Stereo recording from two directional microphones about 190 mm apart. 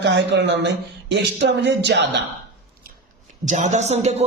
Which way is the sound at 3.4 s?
40° right (ahead or behind).